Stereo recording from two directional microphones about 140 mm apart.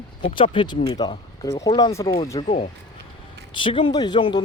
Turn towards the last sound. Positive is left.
turn(degrees=30)  # may be behind; listen again after turning